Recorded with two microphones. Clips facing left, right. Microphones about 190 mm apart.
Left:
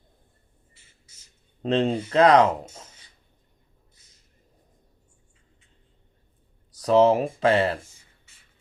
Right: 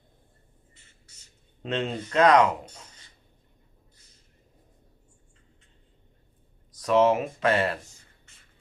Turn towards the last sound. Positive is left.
turn(degrees=30)  # may be behind; listen again after turning